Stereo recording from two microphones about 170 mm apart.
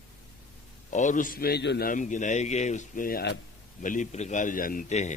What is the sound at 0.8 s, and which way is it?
Speech, 45° left (ahead or behind).